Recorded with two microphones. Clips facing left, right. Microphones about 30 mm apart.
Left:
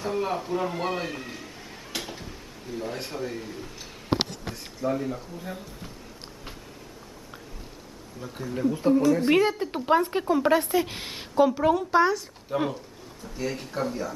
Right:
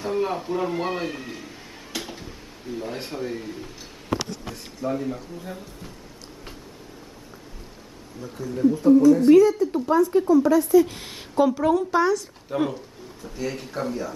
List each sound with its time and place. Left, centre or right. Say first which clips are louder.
0.0 s speech: right 3 dB; centre
2.0 s a sound: right 2 dB; centre
4.8 s speech: right 1 dB; centre
8.2 s a woman's voice: right 5 dB; left
9.3 s speech: right 7 dB; left
11.3 s speech: right 1 dB; centre
12.5 s speech: right 2 dB; centre